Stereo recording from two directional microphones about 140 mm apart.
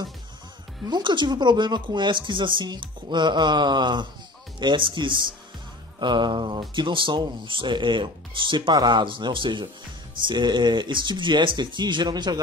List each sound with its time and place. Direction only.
0.8 s speech: 30° right (ahead or behind)